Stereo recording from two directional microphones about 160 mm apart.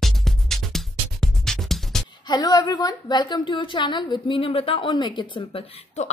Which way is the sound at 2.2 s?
25° left (ahead or behind).